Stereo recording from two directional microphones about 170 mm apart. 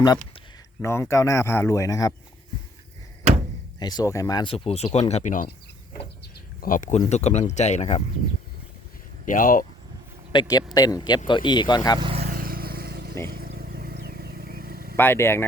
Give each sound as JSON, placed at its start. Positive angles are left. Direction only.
{"t": 0.8, "sound": "a man's voice", "side_deg": 15}
{"t": 3.8, "sound": "speech", "side_deg": 25}
{"t": 4.5, "sound": "speech", "side_deg": 35}
{"t": 9.2, "sound": "speech", "side_deg": 50}
{"t": 10.3, "sound": "speech", "side_deg": 20}
{"t": 11.9, "sound": "speech", "side_deg": -30}
{"t": 12.2, "sound": "vehicle", "side_deg": -55}
{"t": 14.9, "sound": "a man's voice", "side_deg": 10}